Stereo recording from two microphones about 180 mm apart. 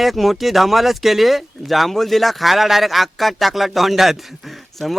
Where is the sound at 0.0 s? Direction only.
Centre (ahead or behind).